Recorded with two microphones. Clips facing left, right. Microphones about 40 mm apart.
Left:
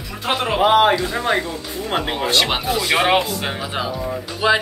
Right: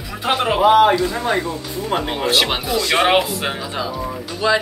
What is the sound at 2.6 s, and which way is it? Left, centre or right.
Speech, centre.